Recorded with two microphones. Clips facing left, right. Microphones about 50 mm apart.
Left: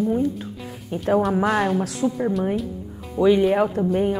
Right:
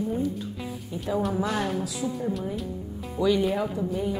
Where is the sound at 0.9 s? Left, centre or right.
Left.